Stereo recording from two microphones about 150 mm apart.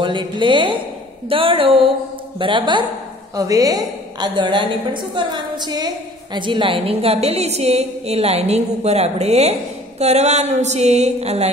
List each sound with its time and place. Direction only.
0.0 s a woman's voice: 30° right (ahead or behind)